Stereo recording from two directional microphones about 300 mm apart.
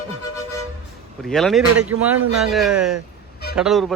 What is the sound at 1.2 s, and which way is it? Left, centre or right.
Speech, centre.